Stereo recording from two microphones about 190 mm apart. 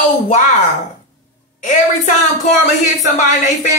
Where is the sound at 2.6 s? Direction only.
45° left (ahead or behind).